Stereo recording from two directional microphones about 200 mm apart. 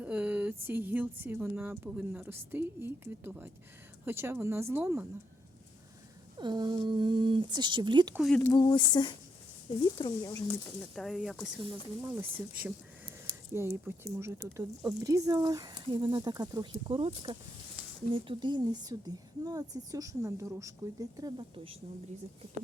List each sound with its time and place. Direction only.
0.0 s a woman's voice: 5° right (ahead or behind)
6.4 s a woman's voice: 20° right (ahead or behind)
8.1 s speech: centre (ahead or behind)
8.5 s speech: 25° left (ahead or behind)
10.5 s a woman's voice: centre (ahead or behind); by 21.8 s 25° right (ahead or behind)